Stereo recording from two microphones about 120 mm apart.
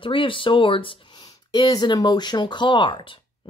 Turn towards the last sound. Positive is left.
turn(degrees=45)  # may be behind; listen again after turning